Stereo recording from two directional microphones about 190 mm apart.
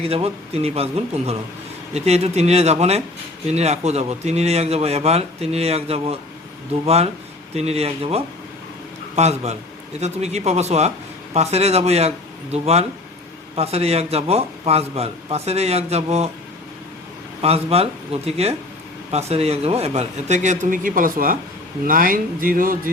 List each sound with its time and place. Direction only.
0.0 s speech: 30° right (ahead or behind)
17.4 s speech: 30° right (ahead or behind); by 22.8 s 50° right (ahead or behind)